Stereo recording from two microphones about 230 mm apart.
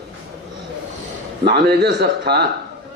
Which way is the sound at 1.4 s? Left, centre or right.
Right.